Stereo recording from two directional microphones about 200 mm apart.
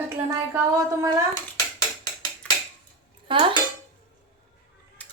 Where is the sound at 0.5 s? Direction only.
15° right (ahead or behind).